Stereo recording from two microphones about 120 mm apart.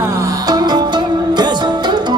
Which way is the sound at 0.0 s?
30° right (ahead or behind).